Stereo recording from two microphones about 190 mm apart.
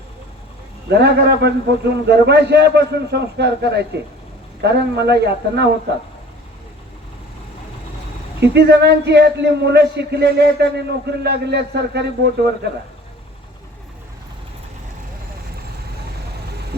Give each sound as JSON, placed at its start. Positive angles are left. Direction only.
{"t": 0.9, "sound": "a man's voice", "side_deg": -60}
{"t": 8.4, "sound": "a man's voice", "side_deg": -60}